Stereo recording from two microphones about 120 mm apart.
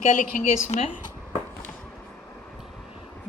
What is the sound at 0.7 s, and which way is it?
Speech, 65° left (ahead or behind).